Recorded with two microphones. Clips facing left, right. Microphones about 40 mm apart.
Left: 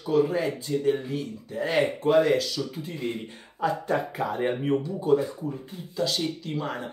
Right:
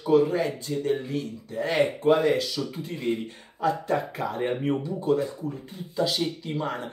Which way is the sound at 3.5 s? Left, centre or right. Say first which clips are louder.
Right 1 dB; centre.